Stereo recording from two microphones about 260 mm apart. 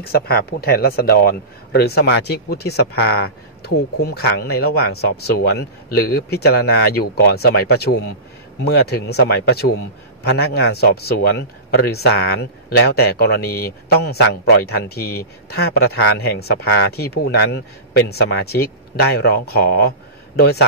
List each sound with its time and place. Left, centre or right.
0.0 s speech: left